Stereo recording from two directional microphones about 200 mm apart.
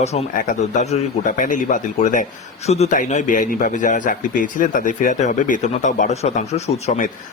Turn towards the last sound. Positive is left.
turn(degrees=30)  # may be behind; listen again after turning